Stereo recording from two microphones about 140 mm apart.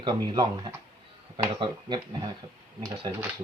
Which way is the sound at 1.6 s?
35° right (ahead or behind).